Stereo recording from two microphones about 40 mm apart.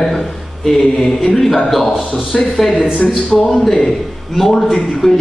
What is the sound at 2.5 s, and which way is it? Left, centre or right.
Speech, centre.